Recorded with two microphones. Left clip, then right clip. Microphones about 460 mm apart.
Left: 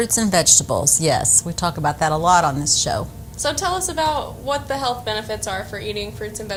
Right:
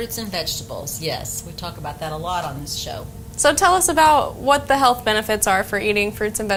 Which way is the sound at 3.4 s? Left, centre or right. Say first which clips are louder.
Right 6 dB; right.